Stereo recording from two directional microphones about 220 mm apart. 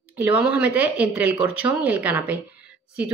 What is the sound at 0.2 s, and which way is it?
Speech, 5° right (ahead or behind).